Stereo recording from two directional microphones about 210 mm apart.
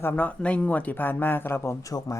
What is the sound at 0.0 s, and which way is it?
Speech, 10° left (ahead or behind).